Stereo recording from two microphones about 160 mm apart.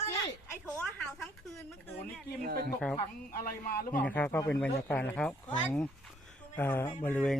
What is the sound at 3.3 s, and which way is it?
Speech, 70° left (ahead or behind).